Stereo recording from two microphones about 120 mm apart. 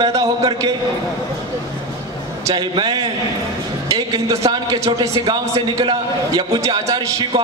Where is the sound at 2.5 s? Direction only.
35° right (ahead or behind).